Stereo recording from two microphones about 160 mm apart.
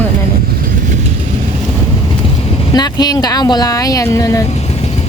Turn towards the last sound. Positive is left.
turn(degrees=20)  # may be behind; listen again after turning